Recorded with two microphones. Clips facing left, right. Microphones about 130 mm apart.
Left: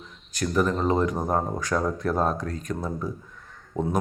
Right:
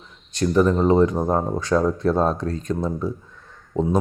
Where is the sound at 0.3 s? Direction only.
25° right (ahead or behind).